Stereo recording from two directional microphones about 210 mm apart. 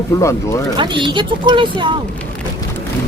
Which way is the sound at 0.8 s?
20° right (ahead or behind).